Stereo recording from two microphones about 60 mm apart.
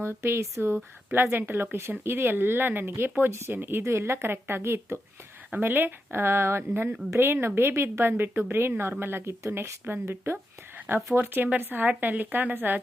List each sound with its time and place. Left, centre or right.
0.0 s speech: right
5.5 s speech: right